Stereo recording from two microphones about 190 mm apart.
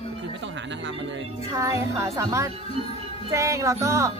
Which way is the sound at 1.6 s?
15° right (ahead or behind).